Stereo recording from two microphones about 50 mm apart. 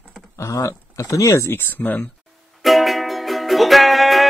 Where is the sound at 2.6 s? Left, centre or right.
Centre.